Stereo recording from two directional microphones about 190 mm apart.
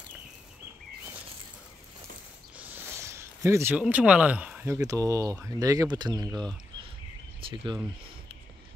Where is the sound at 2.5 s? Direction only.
15° right (ahead or behind).